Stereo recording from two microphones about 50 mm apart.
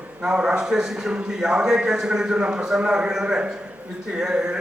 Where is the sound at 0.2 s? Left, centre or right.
Centre.